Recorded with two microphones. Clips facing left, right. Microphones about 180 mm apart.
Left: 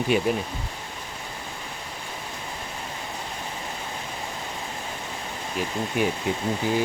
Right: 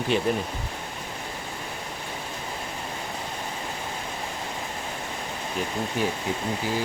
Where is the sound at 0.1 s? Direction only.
10° left (ahead or behind).